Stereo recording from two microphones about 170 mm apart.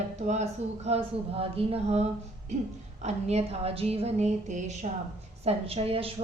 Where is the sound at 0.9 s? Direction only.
35° right (ahead or behind).